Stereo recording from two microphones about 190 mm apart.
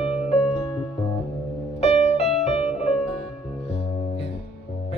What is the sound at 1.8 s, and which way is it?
Music, 35° left (ahead or behind).